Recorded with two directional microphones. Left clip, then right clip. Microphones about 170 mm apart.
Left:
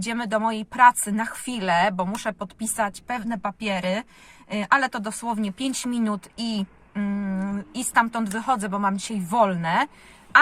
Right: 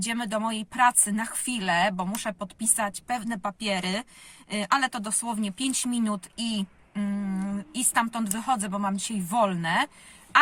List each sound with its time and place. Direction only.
0.0 s speech: 20° right (ahead or behind)